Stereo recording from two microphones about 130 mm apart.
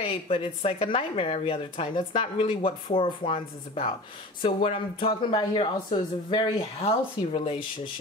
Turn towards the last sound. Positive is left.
turn(degrees=45)  # may be behind; listen again after turning